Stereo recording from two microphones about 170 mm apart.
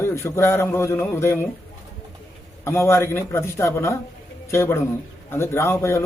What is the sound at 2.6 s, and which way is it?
A man's voice, 15° left (ahead or behind).